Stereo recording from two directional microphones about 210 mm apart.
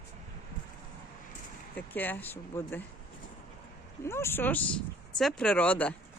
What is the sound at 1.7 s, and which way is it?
Speech, 10° left (ahead or behind).